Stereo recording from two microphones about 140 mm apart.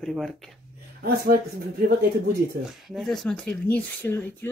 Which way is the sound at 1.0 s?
90° right.